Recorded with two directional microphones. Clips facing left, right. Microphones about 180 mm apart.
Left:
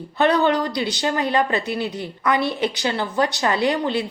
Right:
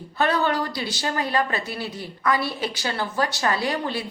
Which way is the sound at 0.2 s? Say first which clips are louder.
Left 4 dB; 20° left (ahead or behind).